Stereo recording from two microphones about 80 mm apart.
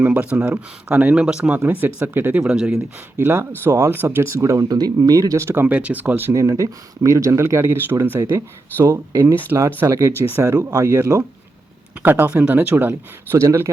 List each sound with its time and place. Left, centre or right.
0.0 s speech: centre
1.5 s speech: right
2.4 s speech: centre
2.7 s speech: right
4.7 s speech: right
5.6 s speech: centre
6.3 s speech: right
8.8 s speech: right
9.5 s speech: right
9.8 s speech: right
10.3 s speech: right
11.9 s speech: right
13.3 s speech: right